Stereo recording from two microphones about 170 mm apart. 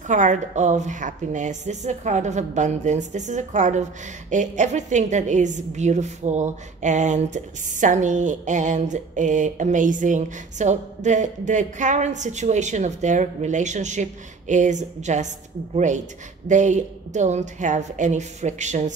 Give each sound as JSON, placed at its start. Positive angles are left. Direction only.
{"t": 0.0, "sound": "a woman's voice", "side_deg": -45}